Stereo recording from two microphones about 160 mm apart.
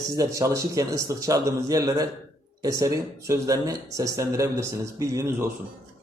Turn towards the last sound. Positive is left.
turn(degrees=-20)  # may be behind; listen again after turning